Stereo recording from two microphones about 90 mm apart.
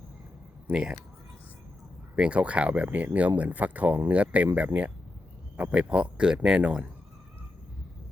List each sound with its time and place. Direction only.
0.7 s speech: 10° right (ahead or behind)
2.1 s speech: 10° right (ahead or behind)